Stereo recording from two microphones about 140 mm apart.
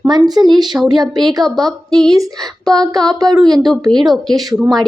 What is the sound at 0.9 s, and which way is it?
Speech, 30° right (ahead or behind).